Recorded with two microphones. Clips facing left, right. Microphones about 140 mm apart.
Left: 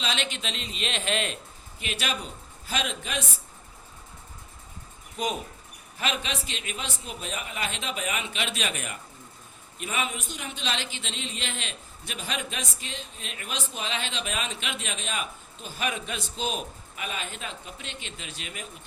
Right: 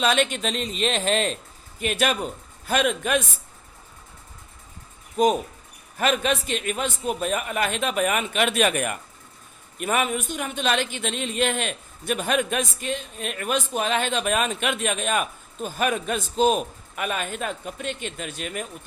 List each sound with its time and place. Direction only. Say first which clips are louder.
0.0 s speech: right 9 dB; 50° right (ahead or behind)
1.8 s speech: right 9 dB; 50° right (ahead or behind)
5.1 s speech: right 10 dB; 45° right (ahead or behind)